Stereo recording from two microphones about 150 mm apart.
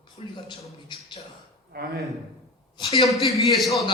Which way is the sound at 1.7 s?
90° right.